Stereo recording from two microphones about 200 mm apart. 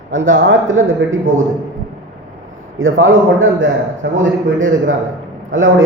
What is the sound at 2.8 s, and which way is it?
A man's voice, 80° right.